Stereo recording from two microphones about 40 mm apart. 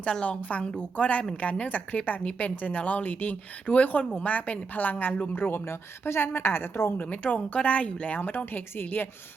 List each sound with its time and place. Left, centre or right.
0.0 s speech: left
5.3 s a woman's voice: left
7.1 s speech: left
8.5 s a woman's voice: left